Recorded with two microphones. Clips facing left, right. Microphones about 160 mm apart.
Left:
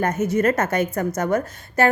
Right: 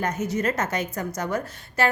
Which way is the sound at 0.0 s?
50° left (ahead or behind).